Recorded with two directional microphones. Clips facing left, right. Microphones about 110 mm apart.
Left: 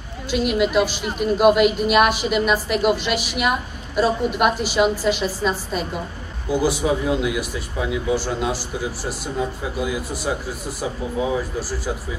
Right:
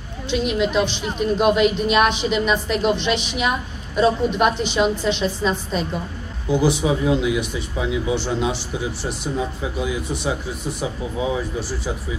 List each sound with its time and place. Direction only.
0.3 s a woman's voice: 5° left (ahead or behind)
11.1 s speech: 10° right (ahead or behind)